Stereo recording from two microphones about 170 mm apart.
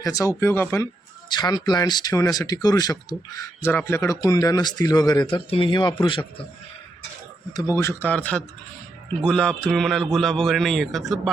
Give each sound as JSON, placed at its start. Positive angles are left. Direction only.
{"t": 0.0, "sound": "a man's voice", "side_deg": 20}
{"t": 1.3, "sound": "a man's voice", "side_deg": 25}
{"t": 7.5, "sound": "a man's voice", "side_deg": 15}